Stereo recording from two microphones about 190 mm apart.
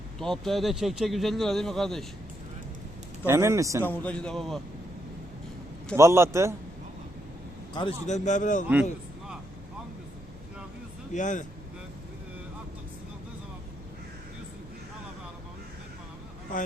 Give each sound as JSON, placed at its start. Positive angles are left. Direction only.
{"t": 0.2, "sound": "speech", "side_deg": 0}
{"t": 3.2, "sound": "a man's voice", "side_deg": -15}
{"t": 3.8, "sound": "speech", "side_deg": 10}
{"t": 6.0, "sound": "a man's voice", "side_deg": -15}
{"t": 7.7, "sound": "speech", "side_deg": 25}
{"t": 8.0, "sound": "a man's voice", "side_deg": 40}
{"t": 8.6, "sound": "a sound", "side_deg": -5}
{"t": 11.1, "sound": "a man's voice", "side_deg": 40}